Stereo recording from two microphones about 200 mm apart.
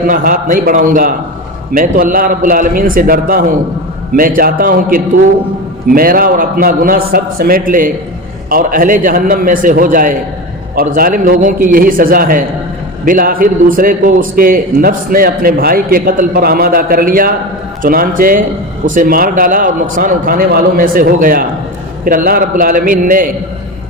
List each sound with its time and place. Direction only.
0.1 s a man's voice: 45° right (ahead or behind)